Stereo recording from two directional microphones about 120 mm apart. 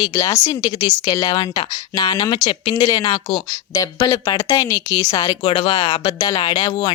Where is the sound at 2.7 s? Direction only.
30° left (ahead or behind).